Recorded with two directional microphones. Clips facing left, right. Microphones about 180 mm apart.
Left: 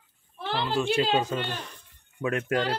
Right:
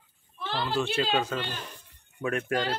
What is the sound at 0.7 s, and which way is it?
Speech, 15° left (ahead or behind).